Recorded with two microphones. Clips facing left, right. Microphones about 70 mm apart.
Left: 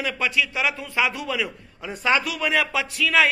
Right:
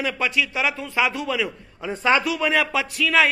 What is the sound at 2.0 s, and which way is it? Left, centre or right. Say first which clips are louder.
Speech: right 2 dB; centre.